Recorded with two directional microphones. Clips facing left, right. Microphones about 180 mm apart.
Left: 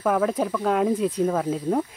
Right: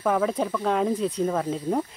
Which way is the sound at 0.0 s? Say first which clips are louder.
Left 1 dB; centre (ahead or behind).